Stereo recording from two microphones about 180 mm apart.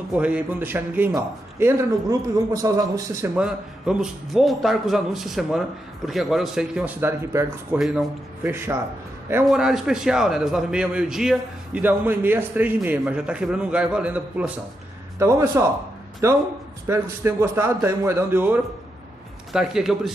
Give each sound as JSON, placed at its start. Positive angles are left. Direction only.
{"t": 0.2, "sound": "a man's voice", "side_deg": -10}
{"t": 3.3, "sound": "a man's voice", "side_deg": -5}
{"t": 9.5, "sound": "a man's voice", "side_deg": -5}